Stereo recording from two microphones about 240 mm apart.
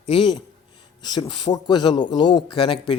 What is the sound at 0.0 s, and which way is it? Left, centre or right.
A man's voice, left.